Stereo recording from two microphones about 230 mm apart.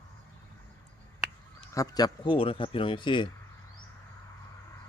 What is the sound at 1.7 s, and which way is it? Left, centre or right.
Speech, centre.